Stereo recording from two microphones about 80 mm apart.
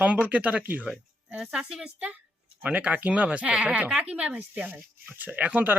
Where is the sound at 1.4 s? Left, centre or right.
Centre.